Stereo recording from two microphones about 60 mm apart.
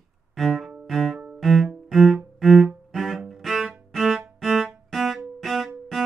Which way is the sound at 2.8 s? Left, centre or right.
Centre.